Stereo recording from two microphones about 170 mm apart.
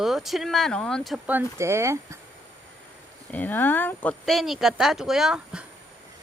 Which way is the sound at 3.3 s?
10° left (ahead or behind).